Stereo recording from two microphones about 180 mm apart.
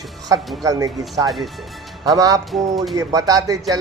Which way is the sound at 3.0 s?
20° right (ahead or behind).